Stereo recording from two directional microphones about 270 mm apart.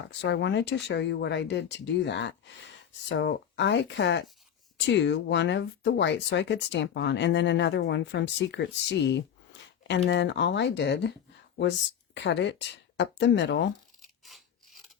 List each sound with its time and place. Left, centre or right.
0.2 s speech: left
12.1 s speech: left
14.3 s filing: centre